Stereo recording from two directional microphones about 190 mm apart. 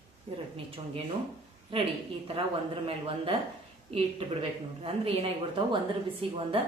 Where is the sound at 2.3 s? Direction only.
30° right (ahead or behind).